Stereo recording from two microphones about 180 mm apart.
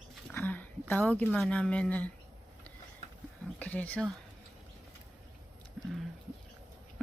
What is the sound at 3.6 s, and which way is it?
Speech, 10° left (ahead or behind).